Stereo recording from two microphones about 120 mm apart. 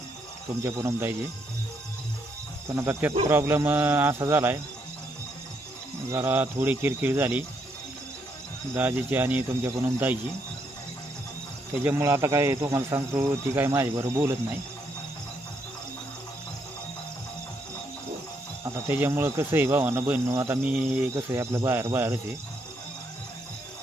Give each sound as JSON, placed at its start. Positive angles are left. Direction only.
{"t": 0.6, "sound": "speech", "side_deg": -25}
{"t": 2.7, "sound": "speech", "side_deg": -20}
{"t": 6.1, "sound": "speech", "side_deg": -20}
{"t": 8.7, "sound": "speech", "side_deg": -15}
{"t": 11.9, "sound": "speech", "side_deg": -25}
{"t": 18.9, "sound": "speech", "side_deg": -15}